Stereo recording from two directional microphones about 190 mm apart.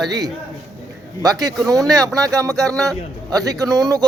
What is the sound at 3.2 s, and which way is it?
Speech, 20° right (ahead or behind).